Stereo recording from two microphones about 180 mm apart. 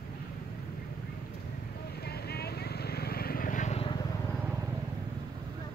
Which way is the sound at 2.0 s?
60° left (ahead or behind).